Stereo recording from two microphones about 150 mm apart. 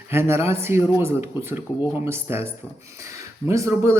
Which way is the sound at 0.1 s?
15° right (ahead or behind).